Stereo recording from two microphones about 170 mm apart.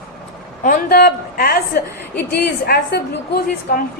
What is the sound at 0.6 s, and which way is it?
A woman's voice, 60° left (ahead or behind).